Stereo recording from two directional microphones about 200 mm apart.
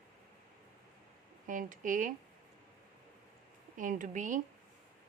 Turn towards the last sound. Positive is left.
turn(degrees=-40)  # may be behind; listen again after turning